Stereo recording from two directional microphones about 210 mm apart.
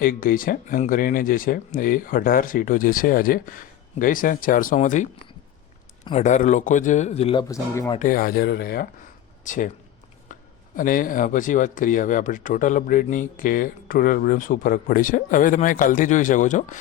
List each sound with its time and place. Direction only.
0.0 s speech: 40° left (ahead or behind)
6.1 s speech: 35° left (ahead or behind); by 7.9 s 15° left (ahead or behind)
7.9 s speech: 40° left (ahead or behind)
10.8 s speech: 40° left (ahead or behind)